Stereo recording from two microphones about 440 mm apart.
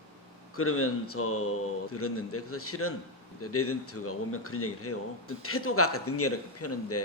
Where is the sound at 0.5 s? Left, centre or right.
Left.